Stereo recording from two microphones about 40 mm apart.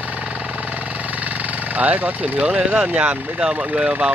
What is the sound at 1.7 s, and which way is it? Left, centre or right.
Speech, right.